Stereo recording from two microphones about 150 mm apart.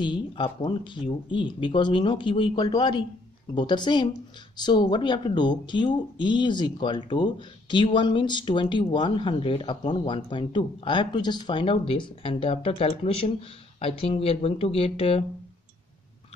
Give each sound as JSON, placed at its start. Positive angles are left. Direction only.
{"t": 0.0, "sound": "speech", "side_deg": 30}